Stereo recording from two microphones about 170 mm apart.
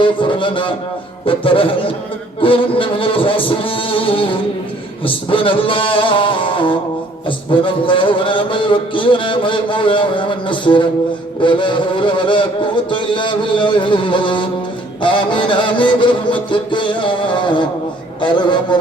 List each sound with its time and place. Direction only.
0.0 s music: 30° left (ahead or behind)
2.4 s a sound: 30° left (ahead or behind)
5.0 s music: 30° left (ahead or behind)